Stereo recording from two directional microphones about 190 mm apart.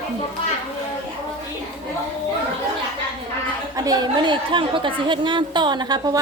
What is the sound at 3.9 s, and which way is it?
A woman's voice, 20° right (ahead or behind).